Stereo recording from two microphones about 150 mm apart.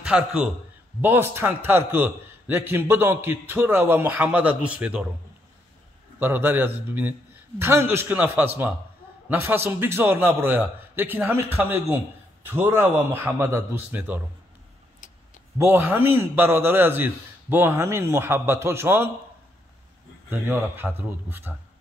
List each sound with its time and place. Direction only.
0.0 s a man's voice: 5° right (ahead or behind)
6.1 s a man's voice: 15° right (ahead or behind)
15.0 s a sound: 60° left (ahead or behind)
15.5 s a man's voice: 15° right (ahead or behind)
20.2 s a man's voice: 15° right (ahead or behind)